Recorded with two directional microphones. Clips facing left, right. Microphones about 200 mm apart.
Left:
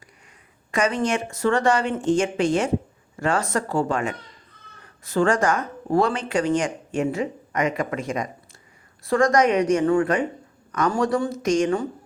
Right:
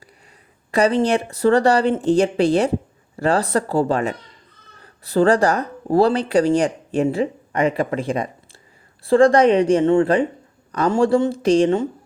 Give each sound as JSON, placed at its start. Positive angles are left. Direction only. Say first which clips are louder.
{"t": 0.7, "sound": "speech", "louder": "right 6 dB", "side_deg": -35}